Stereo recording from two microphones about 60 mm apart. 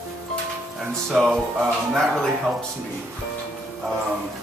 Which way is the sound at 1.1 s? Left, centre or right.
Centre.